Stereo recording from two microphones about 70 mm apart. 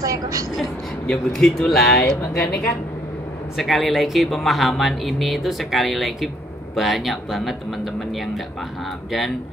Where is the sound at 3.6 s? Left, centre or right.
Centre.